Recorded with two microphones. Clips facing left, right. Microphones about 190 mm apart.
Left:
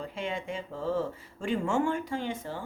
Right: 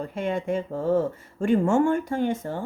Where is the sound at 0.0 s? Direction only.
50° right (ahead or behind).